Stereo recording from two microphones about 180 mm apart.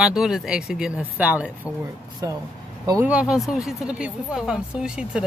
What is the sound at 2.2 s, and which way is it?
Speech, 20° right (ahead or behind).